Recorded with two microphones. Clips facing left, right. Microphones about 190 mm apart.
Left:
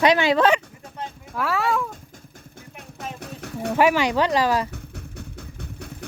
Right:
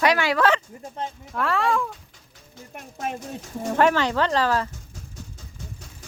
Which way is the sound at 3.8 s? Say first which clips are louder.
Left 1 dB; 10° left (ahead or behind).